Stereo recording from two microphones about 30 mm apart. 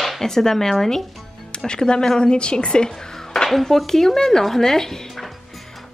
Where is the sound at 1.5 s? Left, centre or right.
Left.